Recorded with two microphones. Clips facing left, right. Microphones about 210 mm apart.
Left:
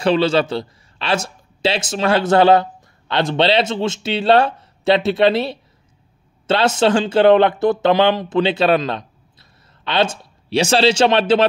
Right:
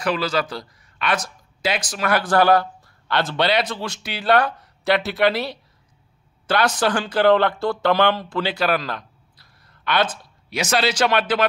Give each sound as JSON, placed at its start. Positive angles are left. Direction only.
{"t": 0.0, "sound": "speech", "side_deg": 25}